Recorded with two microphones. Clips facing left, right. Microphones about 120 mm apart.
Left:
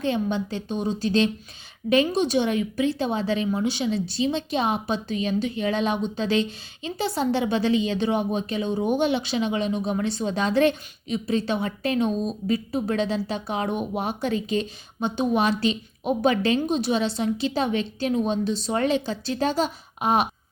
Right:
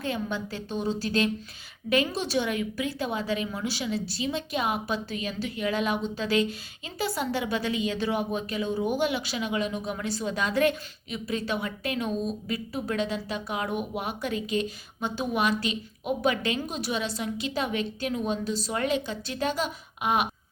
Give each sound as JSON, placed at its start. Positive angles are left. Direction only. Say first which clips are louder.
{"t": 0.0, "sound": "a woman's voice", "louder": "left 6 dB", "side_deg": 25}